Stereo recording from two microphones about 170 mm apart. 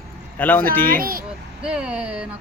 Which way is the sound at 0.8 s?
60° right (ahead or behind).